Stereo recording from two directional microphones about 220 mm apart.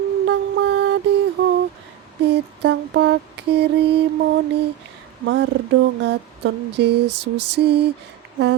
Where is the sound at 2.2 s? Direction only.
50° right (ahead or behind).